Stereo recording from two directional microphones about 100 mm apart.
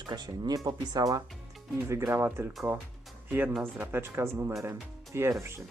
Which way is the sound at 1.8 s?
30° right (ahead or behind).